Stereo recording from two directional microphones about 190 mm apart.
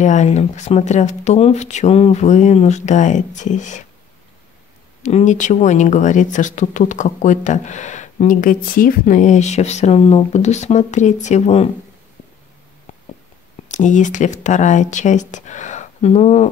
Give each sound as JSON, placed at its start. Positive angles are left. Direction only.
{"t": 0.0, "sound": "speech", "side_deg": 40}
{"t": 5.0, "sound": "speech", "side_deg": 40}
{"t": 13.7, "sound": "speech", "side_deg": 40}